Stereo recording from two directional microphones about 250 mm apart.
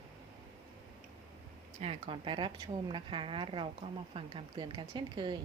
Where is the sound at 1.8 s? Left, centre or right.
Right.